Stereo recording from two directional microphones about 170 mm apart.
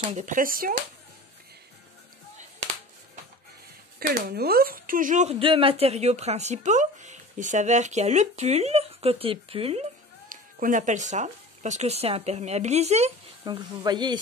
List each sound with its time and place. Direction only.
0.1 s speech: 50° right (ahead or behind)
4.0 s speech: 65° right (ahead or behind); by 9.8 s 35° right (ahead or behind)
10.3 s speech: 50° right (ahead or behind)
13.5 s speech: 25° right (ahead or behind)